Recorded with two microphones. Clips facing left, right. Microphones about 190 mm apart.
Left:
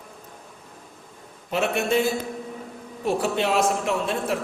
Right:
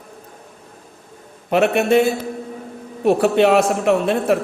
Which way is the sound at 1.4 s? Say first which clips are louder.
Right 8 dB; 65° right (ahead or behind).